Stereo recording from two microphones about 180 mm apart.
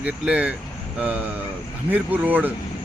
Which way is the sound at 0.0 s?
5° right (ahead or behind).